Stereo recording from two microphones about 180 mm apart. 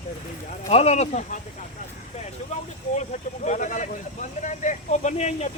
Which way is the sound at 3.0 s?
40° left (ahead or behind).